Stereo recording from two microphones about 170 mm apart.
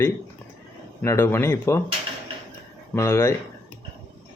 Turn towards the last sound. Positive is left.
turn(degrees=15)  # may be behind; listen again after turning